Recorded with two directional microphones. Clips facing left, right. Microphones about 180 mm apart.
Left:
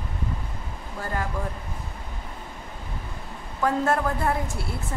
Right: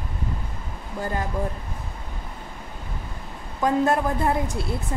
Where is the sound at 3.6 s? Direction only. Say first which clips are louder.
Right 2 dB; 15° right (ahead or behind).